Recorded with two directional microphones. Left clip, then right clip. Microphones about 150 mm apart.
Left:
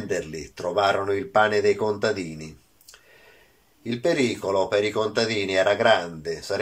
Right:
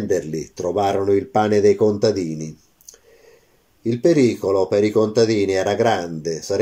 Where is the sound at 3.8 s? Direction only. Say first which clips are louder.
Right 7 dB; 50° right (ahead or behind).